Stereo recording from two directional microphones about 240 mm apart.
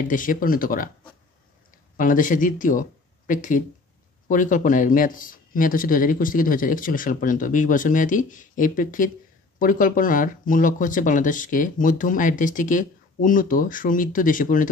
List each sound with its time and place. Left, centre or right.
0.0 s speech: left
2.0 s speech: left